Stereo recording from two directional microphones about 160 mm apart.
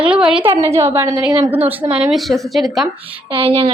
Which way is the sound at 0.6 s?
15° right (ahead or behind).